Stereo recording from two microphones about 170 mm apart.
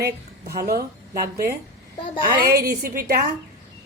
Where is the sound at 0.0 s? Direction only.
65° right (ahead or behind).